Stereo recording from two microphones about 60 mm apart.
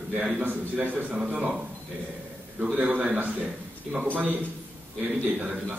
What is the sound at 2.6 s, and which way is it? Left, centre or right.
Speech, right.